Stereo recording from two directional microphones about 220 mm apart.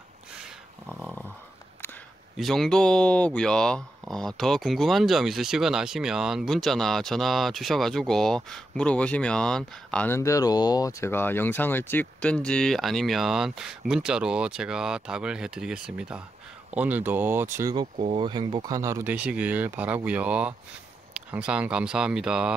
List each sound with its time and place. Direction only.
0.4 s dog: centre (ahead or behind)
2.3 s speech: centre (ahead or behind)